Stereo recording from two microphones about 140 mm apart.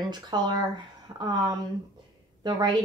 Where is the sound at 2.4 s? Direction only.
30° right (ahead or behind).